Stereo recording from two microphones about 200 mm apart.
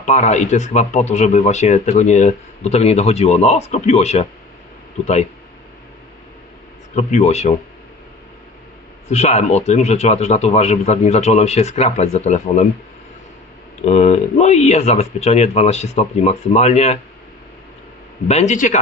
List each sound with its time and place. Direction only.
0.0 s speech: 35° left (ahead or behind)
6.9 s speech: 35° left (ahead or behind)
9.0 s speech: 35° left (ahead or behind)
13.8 s speech: 35° left (ahead or behind)
18.3 s speech: 35° left (ahead or behind)